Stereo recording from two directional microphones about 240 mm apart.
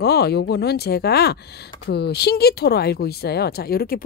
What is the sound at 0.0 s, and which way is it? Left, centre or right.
Speech, left.